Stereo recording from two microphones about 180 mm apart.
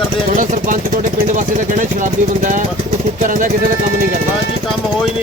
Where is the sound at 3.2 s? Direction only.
45° right (ahead or behind).